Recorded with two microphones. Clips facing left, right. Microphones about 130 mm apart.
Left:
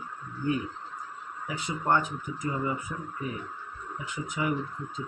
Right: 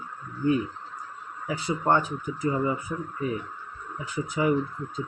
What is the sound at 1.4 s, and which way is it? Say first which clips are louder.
Speech: right 4 dB; 30° right (ahead or behind).